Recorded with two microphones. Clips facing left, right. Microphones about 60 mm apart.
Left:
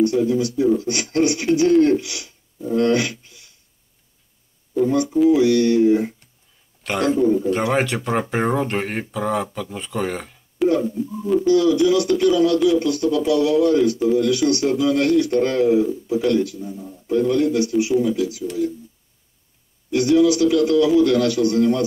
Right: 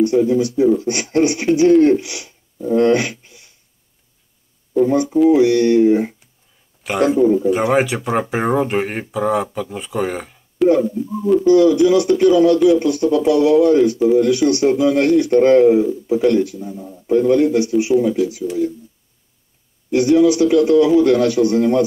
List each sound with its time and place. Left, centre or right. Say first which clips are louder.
0.3 s a man's voice: right 4 dB; right
4.8 s a man's voice: right 2 dB; right
6.8 s speech: right 4 dB; centre
11.4 s a man's voice: right 4 dB; right
18.0 s speech: right 3 dB; centre
19.9 s a man's voice: right 3 dB; right